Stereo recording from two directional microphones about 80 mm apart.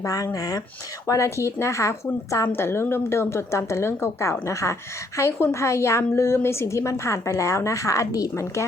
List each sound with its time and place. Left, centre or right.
0.0 s a woman's voice: left